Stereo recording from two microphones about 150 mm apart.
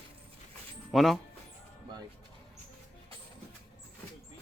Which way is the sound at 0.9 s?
Centre (ahead or behind).